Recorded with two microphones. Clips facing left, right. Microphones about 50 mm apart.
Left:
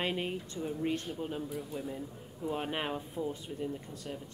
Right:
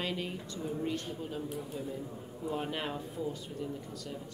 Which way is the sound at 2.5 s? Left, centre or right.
Left.